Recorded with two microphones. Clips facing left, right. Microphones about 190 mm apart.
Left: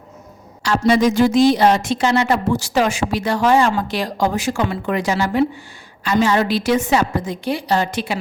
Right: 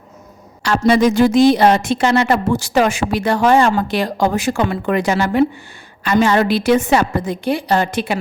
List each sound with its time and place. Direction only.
0.6 s a woman's voice: 60° right (ahead or behind)